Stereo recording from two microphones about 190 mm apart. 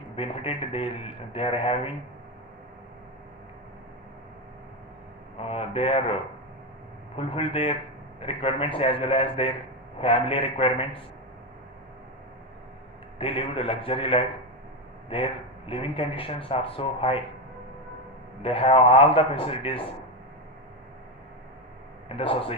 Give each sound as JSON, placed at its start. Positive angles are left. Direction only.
{"t": 0.2, "sound": "speech", "side_deg": 30}
{"t": 5.4, "sound": "a man's voice", "side_deg": 30}
{"t": 7.2, "sound": "speech", "side_deg": 30}
{"t": 13.1, "sound": "speech", "side_deg": 30}
{"t": 18.4, "sound": "speech", "side_deg": 30}
{"t": 22.1, "sound": "speech", "side_deg": 30}